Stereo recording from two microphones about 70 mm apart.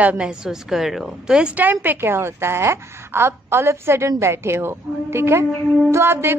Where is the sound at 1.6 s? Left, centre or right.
Right.